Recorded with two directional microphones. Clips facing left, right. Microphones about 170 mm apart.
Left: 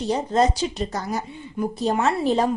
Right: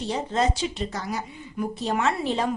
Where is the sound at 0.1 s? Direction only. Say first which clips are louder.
Left 5 dB; 40° left (ahead or behind).